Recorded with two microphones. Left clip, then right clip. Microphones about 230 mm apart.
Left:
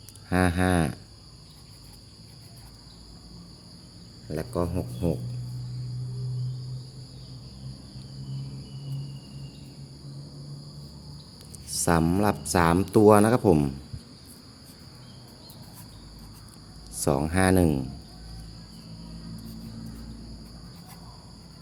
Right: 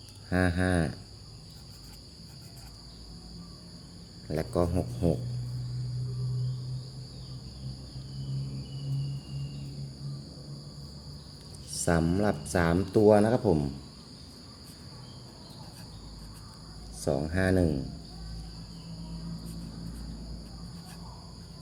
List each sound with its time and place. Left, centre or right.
0.3 s a sound: centre
4.3 s cricket: centre
11.7 s speech: centre
17.0 s speech: left